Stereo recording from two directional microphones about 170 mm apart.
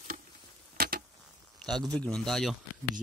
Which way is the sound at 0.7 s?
65° right (ahead or behind).